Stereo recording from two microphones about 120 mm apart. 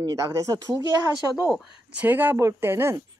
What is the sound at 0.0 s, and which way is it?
A woman's voice, 25° right (ahead or behind).